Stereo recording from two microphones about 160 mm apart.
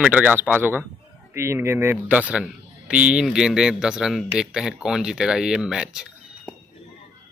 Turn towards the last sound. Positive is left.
turn(degrees=-5)  # may be behind; listen again after turning